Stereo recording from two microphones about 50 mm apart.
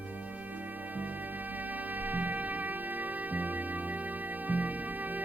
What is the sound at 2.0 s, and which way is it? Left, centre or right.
Music, right.